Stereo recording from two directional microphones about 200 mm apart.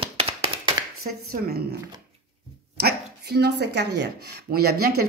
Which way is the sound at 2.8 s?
55° right (ahead or behind).